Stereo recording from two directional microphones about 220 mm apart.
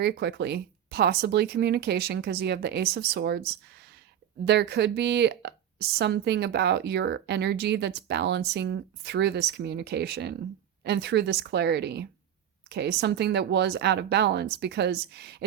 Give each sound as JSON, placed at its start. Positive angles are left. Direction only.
{"t": 0.0, "sound": "speech", "side_deg": -50}